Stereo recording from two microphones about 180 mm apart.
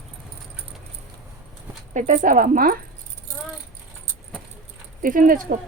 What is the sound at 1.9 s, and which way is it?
Speech, 45° right (ahead or behind).